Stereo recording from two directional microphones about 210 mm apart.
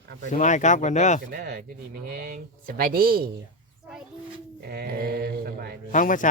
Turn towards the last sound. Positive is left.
turn(degrees=40)  # may be behind; listen again after turning